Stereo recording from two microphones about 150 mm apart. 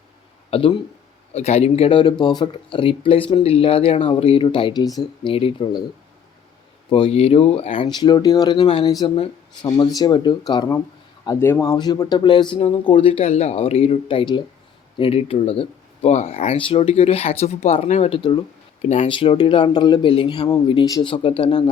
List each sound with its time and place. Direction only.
0.5 s speech: 35° left (ahead or behind)
6.9 s speech: 40° left (ahead or behind)
9.1 s speech: 40° left (ahead or behind)
9.7 s speech: 25° left (ahead or behind)
11.3 s speech: 15° left (ahead or behind); by 18.1 s 50° left (ahead or behind)
18.1 s speech: 35° left (ahead or behind)